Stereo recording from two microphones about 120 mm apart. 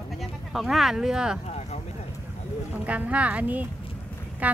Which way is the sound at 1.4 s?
65° left (ahead or behind).